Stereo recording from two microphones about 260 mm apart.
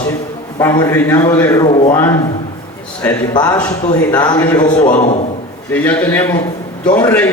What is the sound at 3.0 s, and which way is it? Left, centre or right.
A man's voice, centre.